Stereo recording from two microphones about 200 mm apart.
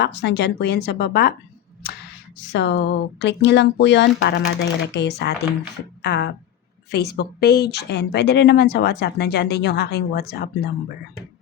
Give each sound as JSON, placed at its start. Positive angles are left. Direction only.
{"t": 0.0, "sound": "speech", "side_deg": 60}
{"t": 1.8, "sound": "a sound", "side_deg": 50}
{"t": 2.5, "sound": "speech", "side_deg": 65}